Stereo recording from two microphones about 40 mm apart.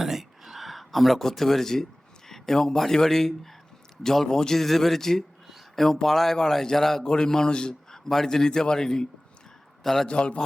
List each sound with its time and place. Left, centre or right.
0.0 s a sound: centre
2.3 s a man's voice: centre
5.5 s a sound: centre
6.1 s a man's voice: centre
7.0 s a man's voice: centre
10.1 s a man's voice: left